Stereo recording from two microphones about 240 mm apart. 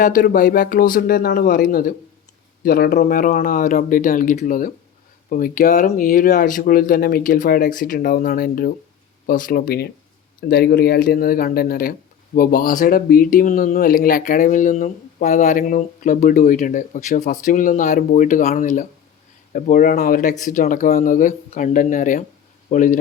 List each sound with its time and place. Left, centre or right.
0.0 s speech: left